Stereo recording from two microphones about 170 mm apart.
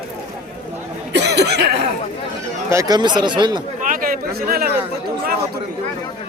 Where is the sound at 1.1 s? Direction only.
90° right.